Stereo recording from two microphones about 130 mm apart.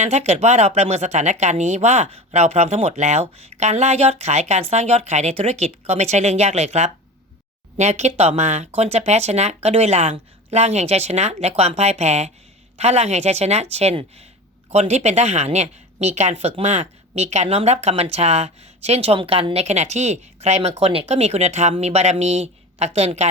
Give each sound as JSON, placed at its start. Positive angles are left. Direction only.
{"t": 0.0, "sound": "speech", "side_deg": -55}